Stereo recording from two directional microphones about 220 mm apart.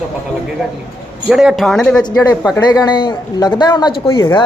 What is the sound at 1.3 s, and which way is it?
Speech, centre (ahead or behind).